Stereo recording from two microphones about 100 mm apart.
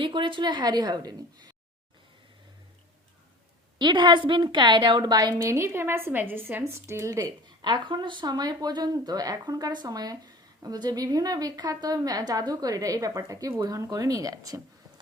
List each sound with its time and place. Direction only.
0.0 s a woman's voice: 55° right (ahead or behind)
3.8 s a woman's voice: 50° right (ahead or behind); by 7.3 s 30° right (ahead or behind)
7.6 s a woman's voice: 45° right (ahead or behind)